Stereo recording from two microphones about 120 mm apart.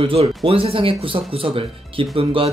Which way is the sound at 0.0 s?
50° right (ahead or behind).